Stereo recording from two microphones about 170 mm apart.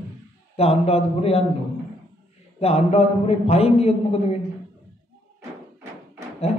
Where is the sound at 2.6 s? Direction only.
40° left (ahead or behind).